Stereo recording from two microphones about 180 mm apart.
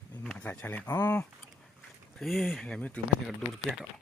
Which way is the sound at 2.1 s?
Centre (ahead or behind).